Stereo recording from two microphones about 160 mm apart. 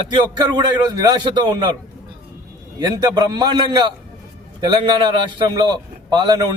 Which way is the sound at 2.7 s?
25° right (ahead or behind).